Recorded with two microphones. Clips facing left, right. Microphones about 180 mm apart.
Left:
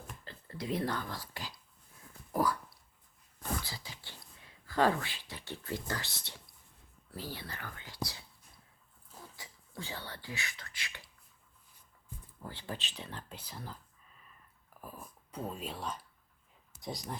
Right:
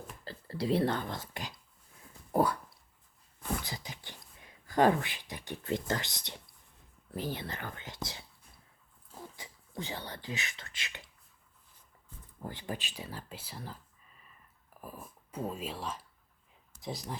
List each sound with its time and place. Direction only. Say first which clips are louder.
0.3 s speech: right 6 dB; 30° right (ahead or behind)
2.3 s dog: right 3 dB; 25° right (ahead or behind)
3.6 s a sound: right 3 dB; 20° right (ahead or behind)
7.1 s speech: right 6 dB; 20° right (ahead or behind)
9.3 s speech: right 4 dB; 20° right (ahead or behind)
12.1 s a sound: left 4 dB; 10° left (ahead or behind)
12.5 s speech: right 3 dB; 15° right (ahead or behind)
14.8 s whispering: right 2 dB; 5° right (ahead or behind)
16.8 s speech: right 1 dB; centre (ahead or behind)